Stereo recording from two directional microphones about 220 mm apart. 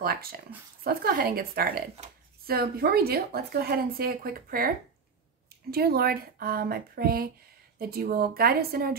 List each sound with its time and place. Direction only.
0.0 s speech: 45° right (ahead or behind)